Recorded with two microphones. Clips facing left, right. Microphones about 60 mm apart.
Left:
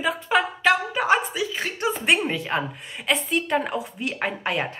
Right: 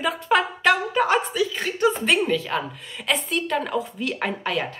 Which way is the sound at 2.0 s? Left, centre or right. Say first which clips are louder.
Right 1 dB; left.